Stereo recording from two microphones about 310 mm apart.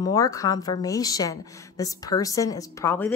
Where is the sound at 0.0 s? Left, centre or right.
Centre.